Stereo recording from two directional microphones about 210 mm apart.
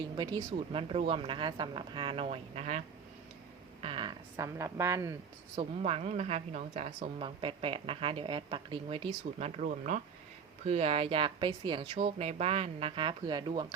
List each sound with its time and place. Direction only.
0.2 s speech: 20° right (ahead or behind)
5.5 s speech: 30° right (ahead or behind)